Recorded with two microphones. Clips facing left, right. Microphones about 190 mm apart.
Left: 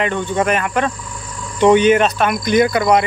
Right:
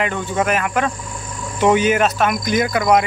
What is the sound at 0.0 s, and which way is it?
Speech, 5° right (ahead or behind).